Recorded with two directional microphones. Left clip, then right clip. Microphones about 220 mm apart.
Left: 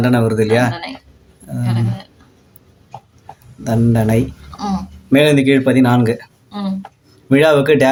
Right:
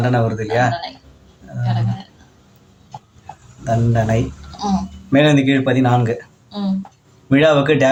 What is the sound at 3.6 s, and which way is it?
Speech, 60° left (ahead or behind).